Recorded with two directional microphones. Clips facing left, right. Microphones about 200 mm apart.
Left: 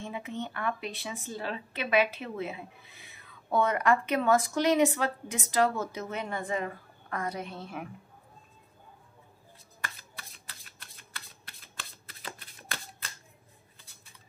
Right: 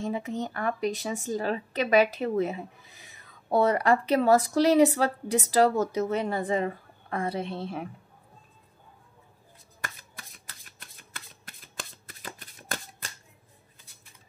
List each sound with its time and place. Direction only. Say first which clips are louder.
0.0 s a woman's voice: right 6 dB; 40° right (ahead or behind)
9.8 s shuffling cards: right 1 dB; 45° right (ahead or behind)